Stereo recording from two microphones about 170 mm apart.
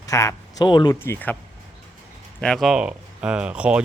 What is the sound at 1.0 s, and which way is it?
Speech, 10° left (ahead or behind).